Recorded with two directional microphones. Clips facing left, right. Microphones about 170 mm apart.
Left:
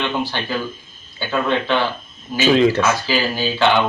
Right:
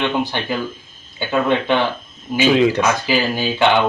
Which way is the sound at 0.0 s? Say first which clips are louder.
Right 2 dB; 15° right (ahead or behind).